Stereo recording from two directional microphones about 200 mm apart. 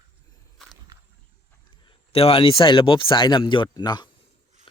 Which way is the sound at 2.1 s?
30° left (ahead or behind).